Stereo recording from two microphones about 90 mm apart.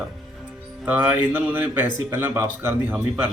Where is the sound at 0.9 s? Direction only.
20° right (ahead or behind).